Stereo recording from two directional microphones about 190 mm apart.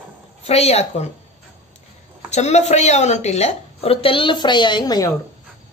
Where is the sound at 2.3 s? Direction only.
35° left (ahead or behind); by 5.1 s 20° left (ahead or behind).